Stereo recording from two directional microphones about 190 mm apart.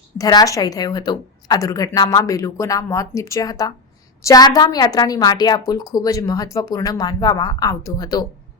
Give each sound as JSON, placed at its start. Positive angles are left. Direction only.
{"t": 0.2, "sound": "a woman's voice", "side_deg": 20}